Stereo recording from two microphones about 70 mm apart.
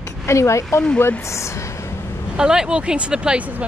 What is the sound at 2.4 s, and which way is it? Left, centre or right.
Speech, centre.